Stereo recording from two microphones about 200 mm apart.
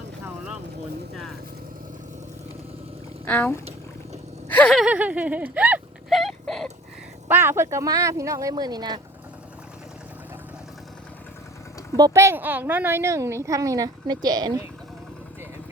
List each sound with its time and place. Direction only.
3.2 s speech: 10° left (ahead or behind)
4.4 s whimper: 5° left (ahead or behind)
7.3 s a woman's voice: 10° right (ahead or behind)
11.9 s a woman's voice: 15° right (ahead or behind)